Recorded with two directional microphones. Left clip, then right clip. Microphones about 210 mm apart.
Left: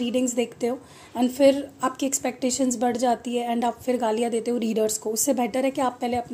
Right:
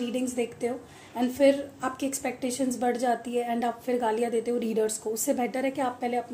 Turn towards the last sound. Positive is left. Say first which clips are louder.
# left 3 dB
turn(degrees=35)  # may be behind; listen again after turning